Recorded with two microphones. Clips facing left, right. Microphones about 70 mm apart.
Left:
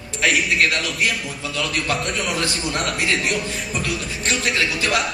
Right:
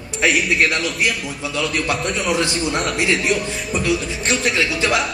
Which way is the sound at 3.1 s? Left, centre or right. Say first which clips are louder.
Right 3 dB; centre.